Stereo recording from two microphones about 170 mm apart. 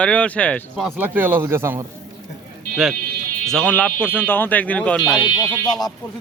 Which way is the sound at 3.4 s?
5° left (ahead or behind).